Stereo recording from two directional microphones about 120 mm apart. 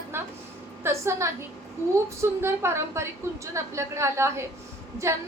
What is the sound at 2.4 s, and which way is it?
A woman's voice, 20° right (ahead or behind).